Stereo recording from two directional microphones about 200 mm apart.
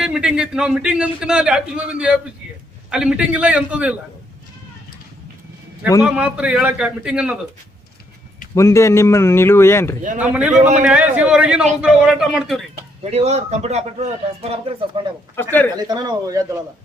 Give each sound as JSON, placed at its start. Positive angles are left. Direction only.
{"t": 0.0, "sound": "a man's voice", "side_deg": -5}
{"t": 6.0, "sound": "a man's voice", "side_deg": -5}
{"t": 8.5, "sound": "speech", "side_deg": 15}
{"t": 10.2, "sound": "a man's voice", "side_deg": -5}
{"t": 13.0, "sound": "a man's voice", "side_deg": -30}
{"t": 15.4, "sound": "speech", "side_deg": 10}
{"t": 15.7, "sound": "speech", "side_deg": -20}